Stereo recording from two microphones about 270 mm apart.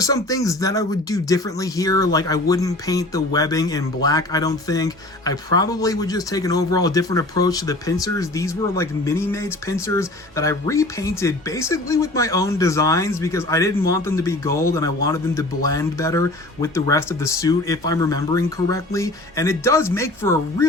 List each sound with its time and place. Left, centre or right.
0.0 s speech: centre